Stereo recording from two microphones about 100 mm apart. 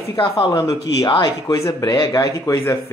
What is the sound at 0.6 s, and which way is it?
Speech, 35° left (ahead or behind).